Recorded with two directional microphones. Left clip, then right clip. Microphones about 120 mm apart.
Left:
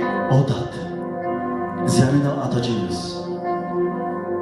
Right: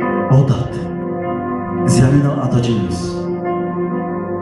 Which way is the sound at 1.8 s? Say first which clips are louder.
Right 4 dB; 35° left (ahead or behind).